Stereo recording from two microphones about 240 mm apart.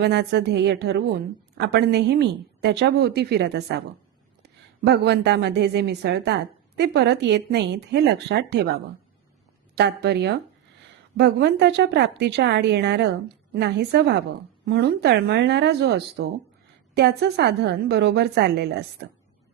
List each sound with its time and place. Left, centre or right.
0.0 s a woman's voice: right